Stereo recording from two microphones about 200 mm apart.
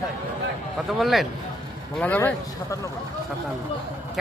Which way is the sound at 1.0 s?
Centre (ahead or behind).